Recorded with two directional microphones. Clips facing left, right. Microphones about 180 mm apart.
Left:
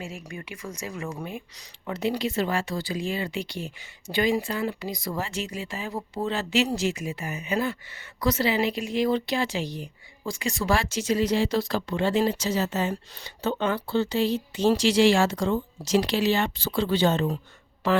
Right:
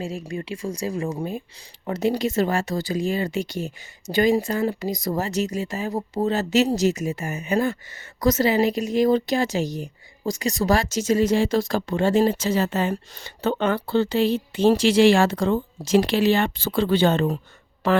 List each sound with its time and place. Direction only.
0.0 s speech: 35° right (ahead or behind); by 17.3 s 60° right (ahead or behind)